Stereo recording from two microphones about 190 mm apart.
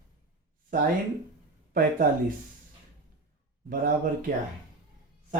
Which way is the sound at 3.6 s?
45° right (ahead or behind).